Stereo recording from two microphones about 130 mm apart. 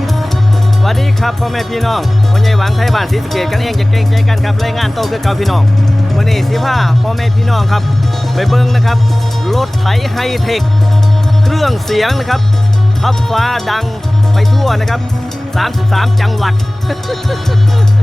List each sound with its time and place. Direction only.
0.9 s speech: centre (ahead or behind)